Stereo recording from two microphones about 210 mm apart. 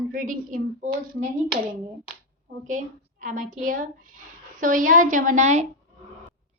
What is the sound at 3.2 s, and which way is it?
A woman's voice, 40° right (ahead or behind).